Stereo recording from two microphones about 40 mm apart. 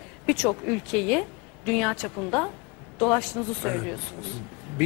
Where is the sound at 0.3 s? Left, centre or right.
Centre.